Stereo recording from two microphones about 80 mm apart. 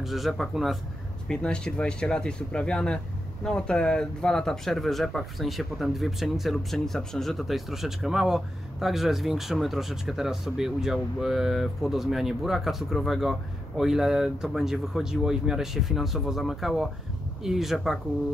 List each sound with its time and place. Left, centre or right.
0.0 s speech: centre
1.3 s speech: centre